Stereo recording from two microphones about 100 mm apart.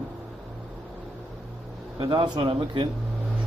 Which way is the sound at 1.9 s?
45° right (ahead or behind).